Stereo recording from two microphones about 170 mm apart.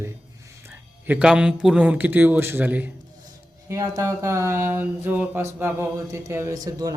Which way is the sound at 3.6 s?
20° right (ahead or behind).